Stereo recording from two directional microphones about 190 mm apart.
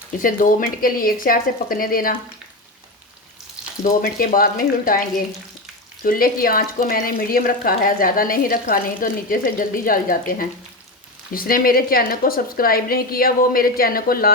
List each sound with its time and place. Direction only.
0.2 s speech: 45° left (ahead or behind)
3.8 s speech: 45° left (ahead or behind)